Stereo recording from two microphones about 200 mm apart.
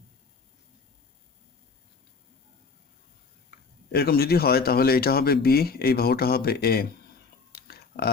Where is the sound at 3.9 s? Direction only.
50° left (ahead or behind).